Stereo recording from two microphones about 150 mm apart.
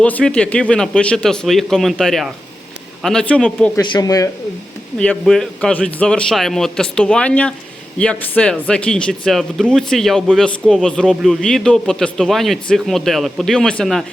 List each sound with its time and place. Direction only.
0.0 s speech: 10° left (ahead or behind)
3.8 s speech: 25° left (ahead or behind)
4.9 s speech: 5° left (ahead or behind)